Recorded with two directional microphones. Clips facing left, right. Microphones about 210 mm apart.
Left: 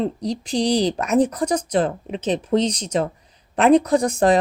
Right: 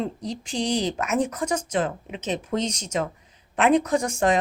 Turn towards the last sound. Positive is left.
turn(degrees=35)  # may be behind; listen again after turning